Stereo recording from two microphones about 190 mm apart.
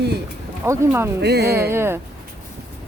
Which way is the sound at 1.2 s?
60° right (ahead or behind).